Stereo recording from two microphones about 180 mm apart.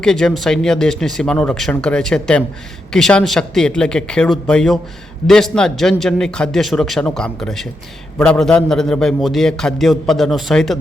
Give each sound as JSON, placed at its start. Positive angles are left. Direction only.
{"t": 0.0, "sound": "a man's voice", "side_deg": 5}